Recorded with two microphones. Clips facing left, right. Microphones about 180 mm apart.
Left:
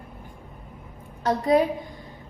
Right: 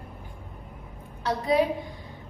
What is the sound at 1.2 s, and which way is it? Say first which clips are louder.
Speech: left 3 dB; 45° left (ahead or behind).